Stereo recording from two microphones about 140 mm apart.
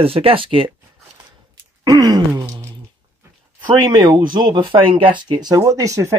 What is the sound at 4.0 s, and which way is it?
Speech, 35° right (ahead or behind).